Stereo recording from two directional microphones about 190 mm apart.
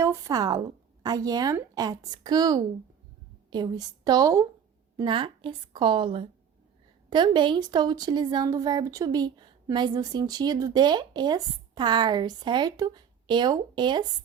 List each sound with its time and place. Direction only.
0.0 s speech: 15° right (ahead or behind)